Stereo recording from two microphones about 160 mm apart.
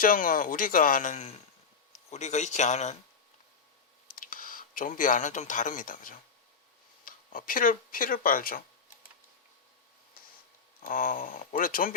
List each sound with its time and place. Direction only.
0.0 s speech: 60° left (ahead or behind)
4.1 s speech: 60° left (ahead or behind)
10.8 s speech: 60° left (ahead or behind)